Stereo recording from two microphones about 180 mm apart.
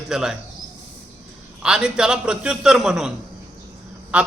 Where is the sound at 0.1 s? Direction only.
5° right (ahead or behind).